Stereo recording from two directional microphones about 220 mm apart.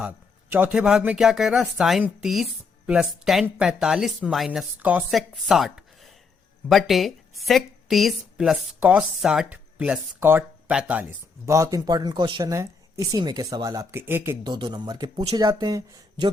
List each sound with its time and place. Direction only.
0.5 s speech: 5° right (ahead or behind)